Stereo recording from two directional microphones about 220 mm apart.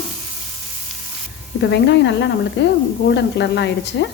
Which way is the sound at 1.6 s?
55° left (ahead or behind).